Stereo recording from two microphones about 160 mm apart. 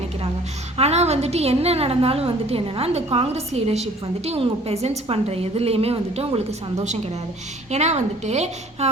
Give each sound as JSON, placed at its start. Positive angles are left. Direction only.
{"t": 0.8, "sound": "a woman's voice", "side_deg": -40}